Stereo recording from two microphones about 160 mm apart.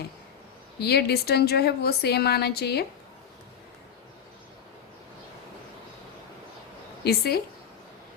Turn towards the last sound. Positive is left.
turn(degrees=80)